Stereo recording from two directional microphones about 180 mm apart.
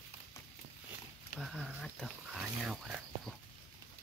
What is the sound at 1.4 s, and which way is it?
Speech, centre (ahead or behind).